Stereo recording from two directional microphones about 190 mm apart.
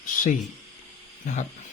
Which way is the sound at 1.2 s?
40° left (ahead or behind).